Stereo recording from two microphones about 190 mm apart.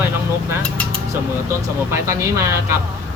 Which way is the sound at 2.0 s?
15° right (ahead or behind).